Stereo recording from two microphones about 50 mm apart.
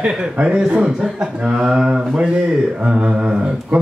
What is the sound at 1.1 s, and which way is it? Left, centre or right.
Speech, centre.